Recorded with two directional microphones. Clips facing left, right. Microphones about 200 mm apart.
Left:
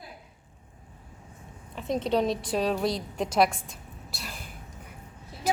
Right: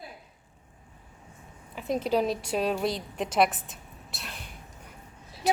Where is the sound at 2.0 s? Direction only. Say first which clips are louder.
Left 1 dB; 5° right (ahead or behind).